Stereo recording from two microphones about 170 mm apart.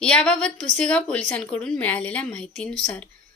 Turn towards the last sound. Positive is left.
turn(degrees=5)  # may be behind; listen again after turning